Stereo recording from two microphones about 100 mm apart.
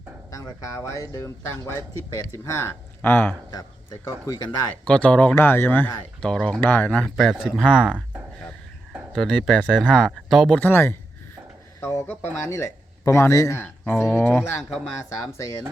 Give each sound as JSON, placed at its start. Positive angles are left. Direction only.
{"t": 0.3, "sound": "speech", "side_deg": 30}
{"t": 4.9, "sound": "speech", "side_deg": 10}
{"t": 5.3, "sound": "speech", "side_deg": 25}
{"t": 6.2, "sound": "speech", "side_deg": 5}
{"t": 9.1, "sound": "speech", "side_deg": 0}
{"t": 10.6, "sound": "speech", "side_deg": 20}
{"t": 15.4, "sound": "speech", "side_deg": 30}